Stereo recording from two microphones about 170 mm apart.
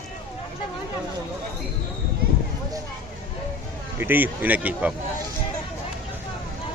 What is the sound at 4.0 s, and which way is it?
Speech, 10° right (ahead or behind).